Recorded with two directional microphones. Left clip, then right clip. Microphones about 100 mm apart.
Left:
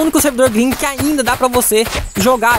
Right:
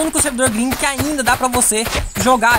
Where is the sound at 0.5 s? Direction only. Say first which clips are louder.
Left 2 dB; 40° left (ahead or behind).